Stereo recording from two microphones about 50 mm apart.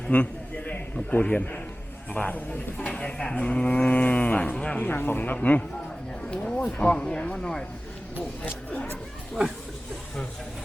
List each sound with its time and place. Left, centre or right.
0.1 s a sound: left
1.3 s speech: left
4.5 s speech: centre
4.8 s speech: left
6.2 s a sound: centre
6.6 s speech: left